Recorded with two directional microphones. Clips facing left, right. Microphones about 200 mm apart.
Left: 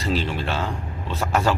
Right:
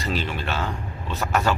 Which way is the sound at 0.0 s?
30° left (ahead or behind).